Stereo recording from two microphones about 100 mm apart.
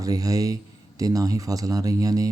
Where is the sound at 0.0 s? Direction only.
35° right (ahead or behind).